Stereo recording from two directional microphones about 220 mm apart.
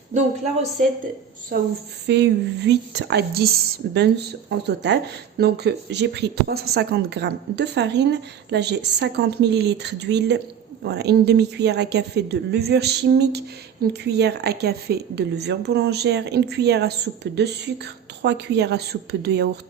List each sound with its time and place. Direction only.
0.1 s speech: 30° right (ahead or behind)
1.5 s speech: 45° right (ahead or behind)